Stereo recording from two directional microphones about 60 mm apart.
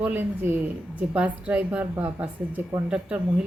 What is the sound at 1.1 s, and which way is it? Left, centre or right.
A woman's voice, right.